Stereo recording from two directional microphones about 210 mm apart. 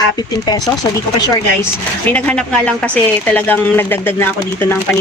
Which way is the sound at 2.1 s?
5° left (ahead or behind).